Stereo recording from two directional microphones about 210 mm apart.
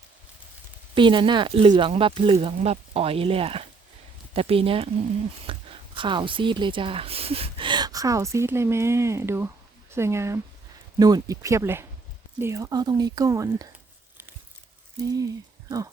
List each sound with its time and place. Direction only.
0.9 s a woman's voice: 25° right (ahead or behind)
5.5 s a sound: 25° right (ahead or behind)
6.0 s a woman's voice: 25° right (ahead or behind)
15.0 s speech: 15° right (ahead or behind)